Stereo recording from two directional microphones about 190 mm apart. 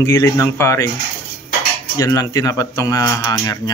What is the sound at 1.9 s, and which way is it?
A man's voice, 20° left (ahead or behind).